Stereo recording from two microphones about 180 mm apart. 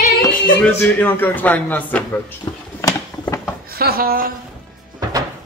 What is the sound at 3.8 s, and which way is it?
Speech, 55° right (ahead or behind).